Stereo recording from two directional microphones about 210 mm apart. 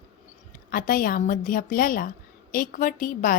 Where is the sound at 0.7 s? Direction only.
40° left (ahead or behind).